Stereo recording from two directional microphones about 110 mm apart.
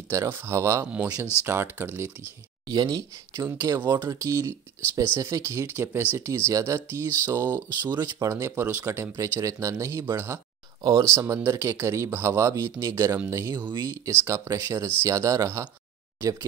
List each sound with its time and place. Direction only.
0.1 s speech: 25° right (ahead or behind)
2.7 s speech: 40° right (ahead or behind)